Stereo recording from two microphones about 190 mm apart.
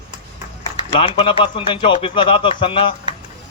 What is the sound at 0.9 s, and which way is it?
Speech, 30° left (ahead or behind).